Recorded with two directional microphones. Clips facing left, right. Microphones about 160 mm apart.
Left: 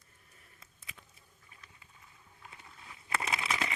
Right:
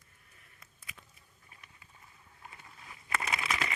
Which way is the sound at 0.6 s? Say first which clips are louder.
Right 1 dB; 25° left (ahead or behind).